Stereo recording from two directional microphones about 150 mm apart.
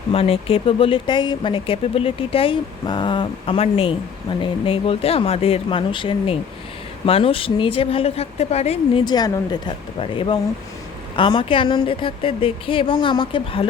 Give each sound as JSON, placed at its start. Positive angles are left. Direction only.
{"t": 0.1, "sound": "speech", "side_deg": 40}
{"t": 9.0, "sound": "speech", "side_deg": 25}